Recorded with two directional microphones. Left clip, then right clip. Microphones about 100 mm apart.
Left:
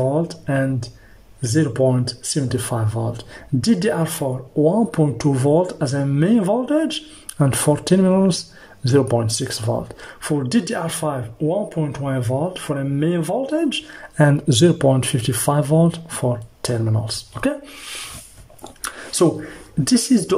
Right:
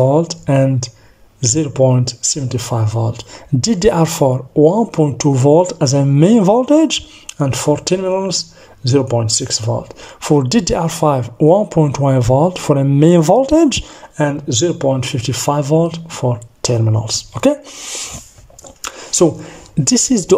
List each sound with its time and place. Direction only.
0.0 s speech: 35° right (ahead or behind)
3.6 s speech: 35° right (ahead or behind)
4.6 s speech: 20° right (ahead or behind)
7.3 s speech: 5° right (ahead or behind)
10.2 s speech: 45° right (ahead or behind)
13.2 s speech: 80° right
13.6 s speech: 55° right (ahead or behind)
14.1 s speech: 5° right (ahead or behind); by 18.0 s 35° right (ahead or behind)
18.8 s a sound: 25° right (ahead or behind)